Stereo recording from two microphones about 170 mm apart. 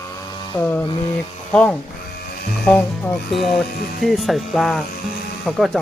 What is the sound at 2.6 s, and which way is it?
Speech, 5° left (ahead or behind).